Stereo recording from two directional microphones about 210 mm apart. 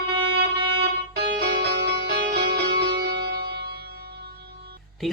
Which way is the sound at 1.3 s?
50° right (ahead or behind).